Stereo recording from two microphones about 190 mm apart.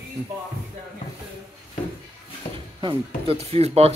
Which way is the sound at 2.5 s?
30° right (ahead or behind).